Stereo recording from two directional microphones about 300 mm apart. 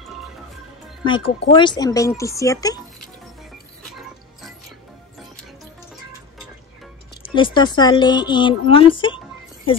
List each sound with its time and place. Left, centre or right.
1.0 s speech: centre
3.9 s mechanisms: centre
7.3 s speech: centre